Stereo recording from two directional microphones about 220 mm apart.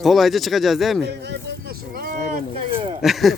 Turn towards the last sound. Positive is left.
turn(degrees=0)  # may be behind; listen again after turning